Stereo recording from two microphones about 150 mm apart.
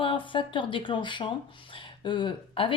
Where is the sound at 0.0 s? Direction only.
35° left (ahead or behind).